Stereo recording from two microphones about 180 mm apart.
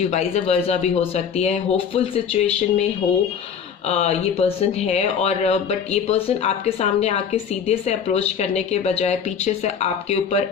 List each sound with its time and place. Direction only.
0.0 s speech: 35° left (ahead or behind)
3.8 s speech: 35° left (ahead or behind)